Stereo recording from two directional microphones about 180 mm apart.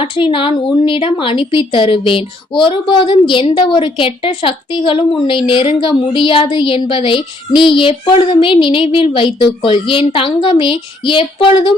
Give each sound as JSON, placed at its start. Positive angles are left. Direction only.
{"t": 0.0, "sound": "a woman's voice", "side_deg": 30}